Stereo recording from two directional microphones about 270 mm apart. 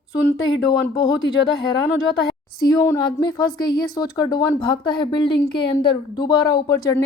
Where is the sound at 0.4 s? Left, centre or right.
Centre.